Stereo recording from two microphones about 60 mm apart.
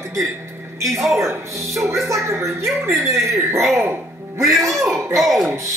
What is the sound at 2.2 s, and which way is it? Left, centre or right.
Music, right.